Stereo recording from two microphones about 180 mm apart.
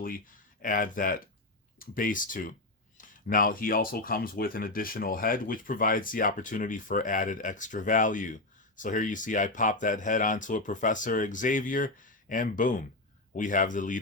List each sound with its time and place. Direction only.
0.6 s speech: 50° left (ahead or behind)